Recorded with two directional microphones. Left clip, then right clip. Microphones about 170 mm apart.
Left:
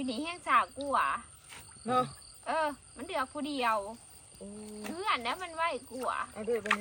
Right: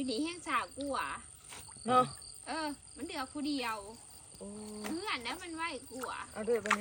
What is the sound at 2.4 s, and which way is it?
Speech, 15° left (ahead or behind).